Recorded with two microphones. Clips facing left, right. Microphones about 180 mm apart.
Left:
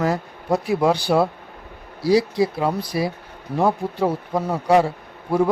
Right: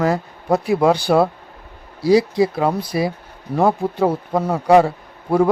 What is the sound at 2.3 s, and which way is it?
A man's voice, 50° right (ahead or behind).